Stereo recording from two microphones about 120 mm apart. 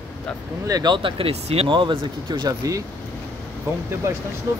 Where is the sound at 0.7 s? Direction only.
35° right (ahead or behind).